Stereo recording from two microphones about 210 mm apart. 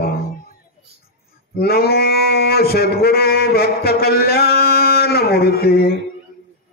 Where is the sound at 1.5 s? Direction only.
50° left (ahead or behind).